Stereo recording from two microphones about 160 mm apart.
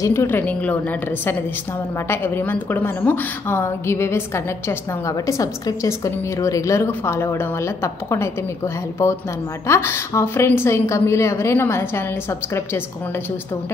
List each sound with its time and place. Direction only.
0.0 s a woman's voice: 15° left (ahead or behind)
9.7 s a woman's voice: 15° left (ahead or behind)